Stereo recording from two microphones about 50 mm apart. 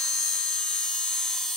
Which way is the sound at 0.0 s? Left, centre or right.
Centre.